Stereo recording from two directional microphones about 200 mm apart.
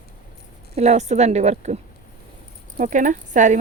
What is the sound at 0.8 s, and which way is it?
Speech, 35° right (ahead or behind).